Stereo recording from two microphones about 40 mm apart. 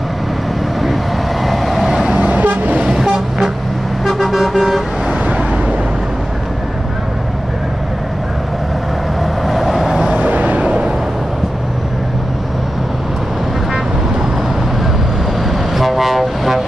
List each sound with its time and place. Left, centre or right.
1.4 s vehicle: centre
2.1 s toot: right
2.9 s vehicle: centre
9.5 s vehicle: centre
10.0 s vehicle: right
15.7 s vehicle: centre